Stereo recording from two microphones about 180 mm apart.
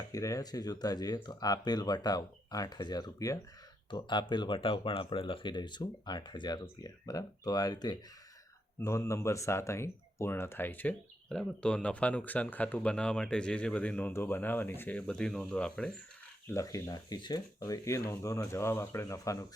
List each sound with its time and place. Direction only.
0.1 s speech: 20° left (ahead or behind)
16.5 s speech: 15° left (ahead or behind)